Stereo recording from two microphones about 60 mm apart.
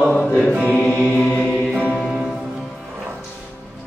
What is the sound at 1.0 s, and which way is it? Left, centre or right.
Music, right.